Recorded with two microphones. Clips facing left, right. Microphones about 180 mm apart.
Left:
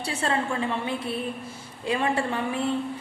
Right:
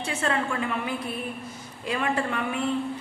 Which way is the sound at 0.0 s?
35° left (ahead or behind).